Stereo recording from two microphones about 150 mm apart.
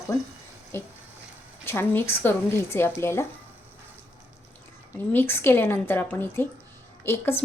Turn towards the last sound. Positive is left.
turn(degrees=15)  # may be behind; listen again after turning